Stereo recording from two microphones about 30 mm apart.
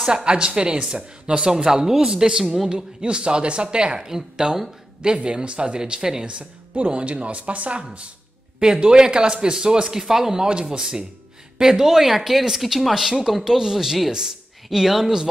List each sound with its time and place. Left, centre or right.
0.0 s speech: right
1.5 s speech: centre
2.7 s speech: right
8.5 s speech: right
10.4 s speech: right; by 15.1 s centre